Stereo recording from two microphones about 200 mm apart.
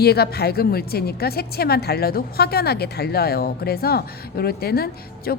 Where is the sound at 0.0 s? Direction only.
50° left (ahead or behind).